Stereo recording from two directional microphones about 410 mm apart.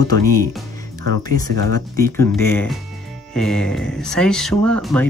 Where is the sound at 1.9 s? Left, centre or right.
Centre.